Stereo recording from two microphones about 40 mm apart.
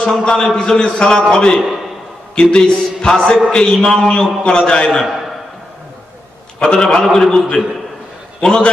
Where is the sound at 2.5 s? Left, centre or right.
Centre.